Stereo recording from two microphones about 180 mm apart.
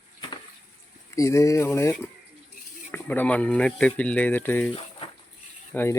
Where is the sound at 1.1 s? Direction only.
15° left (ahead or behind).